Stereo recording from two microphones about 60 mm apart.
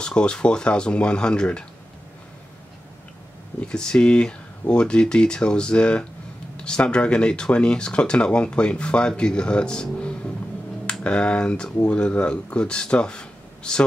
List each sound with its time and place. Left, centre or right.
0.0 s speech: centre
3.6 s speech: centre